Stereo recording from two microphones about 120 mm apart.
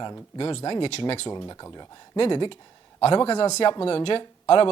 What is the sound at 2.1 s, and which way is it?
Speech, 45° left (ahead or behind).